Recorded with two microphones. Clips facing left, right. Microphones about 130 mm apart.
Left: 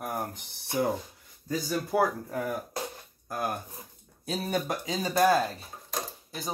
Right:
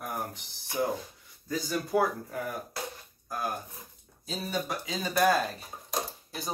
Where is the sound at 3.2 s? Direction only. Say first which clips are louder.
Left 2 dB; 55° left (ahead or behind).